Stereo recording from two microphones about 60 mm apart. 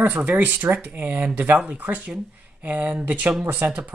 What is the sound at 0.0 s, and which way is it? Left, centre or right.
Speech, right.